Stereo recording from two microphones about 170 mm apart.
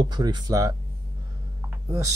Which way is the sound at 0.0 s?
25° right (ahead or behind).